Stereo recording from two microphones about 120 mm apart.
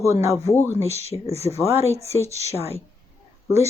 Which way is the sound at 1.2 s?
60° left (ahead or behind).